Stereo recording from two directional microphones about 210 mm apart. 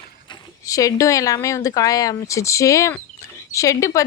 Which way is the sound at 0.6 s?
15° left (ahead or behind).